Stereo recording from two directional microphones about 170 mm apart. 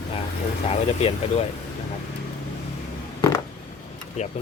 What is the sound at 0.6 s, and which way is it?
Speech, 35° left (ahead or behind).